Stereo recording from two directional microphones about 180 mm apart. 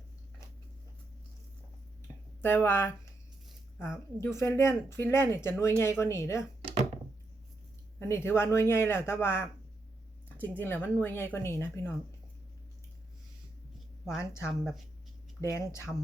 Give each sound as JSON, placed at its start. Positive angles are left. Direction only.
{"t": 2.4, "sound": "speech", "side_deg": 10}
{"t": 4.2, "sound": "speech", "side_deg": 15}
{"t": 6.6, "sound": "a sound", "side_deg": -30}
{"t": 7.9, "sound": "speech", "side_deg": 15}
{"t": 14.2, "sound": "speech", "side_deg": 15}
{"t": 14.5, "sound": "speech", "side_deg": 0}
{"t": 15.4, "sound": "speech", "side_deg": 15}